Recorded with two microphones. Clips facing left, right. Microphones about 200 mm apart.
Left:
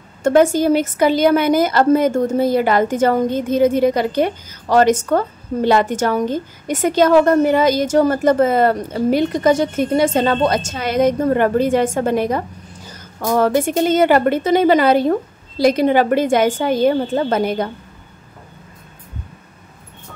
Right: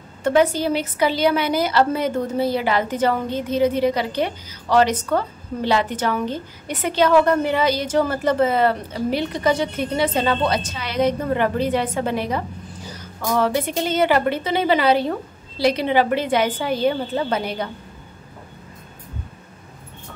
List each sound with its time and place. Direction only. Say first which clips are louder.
0.2 s a woman's voice: left 5 dB; 45° left (ahead or behind)